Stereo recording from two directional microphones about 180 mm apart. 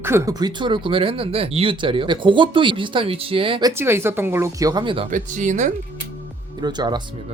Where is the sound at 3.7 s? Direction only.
15° right (ahead or behind).